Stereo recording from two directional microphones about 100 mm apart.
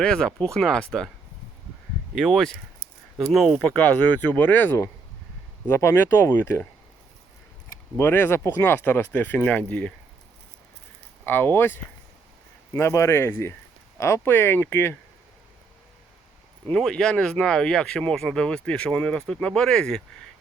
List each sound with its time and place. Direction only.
0.0 s speech: 10° left (ahead or behind)
2.1 s speech: centre (ahead or behind)
3.6 s speech: 10° left (ahead or behind)
7.9 s speech: 25° left (ahead or behind)
11.3 s speech: 20° left (ahead or behind)
16.7 s speech: 5° left (ahead or behind)